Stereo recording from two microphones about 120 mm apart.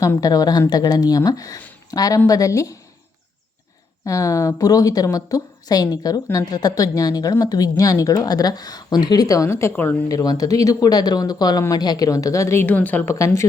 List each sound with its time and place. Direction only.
0.0 s a woman's voice: 30° left (ahead or behind)
4.0 s a woman's voice: 30° left (ahead or behind)
10.1 s a woman's voice: 30° left (ahead or behind); by 13.1 s 15° left (ahead or behind)
13.1 s a woman's voice: 25° left (ahead or behind)